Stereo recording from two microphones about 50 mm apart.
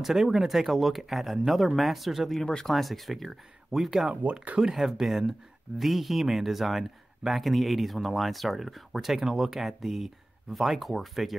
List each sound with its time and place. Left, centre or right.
0.0 s speech: centre
4.1 s speech: right
4.6 s speech: centre